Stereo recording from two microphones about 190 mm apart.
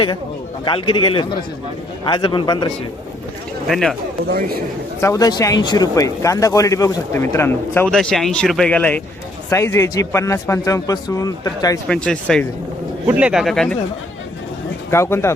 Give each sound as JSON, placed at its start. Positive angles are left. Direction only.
{"t": 0.6, "sound": "a man's voice", "side_deg": 25}
{"t": 3.7, "sound": "speech", "side_deg": 0}
{"t": 4.3, "sound": "a man's voice", "side_deg": -55}
{"t": 4.9, "sound": "speech", "side_deg": 15}
{"t": 11.9, "sound": "speech", "side_deg": 5}
{"t": 13.1, "sound": "speech", "side_deg": -5}
{"t": 14.8, "sound": "speech", "side_deg": 15}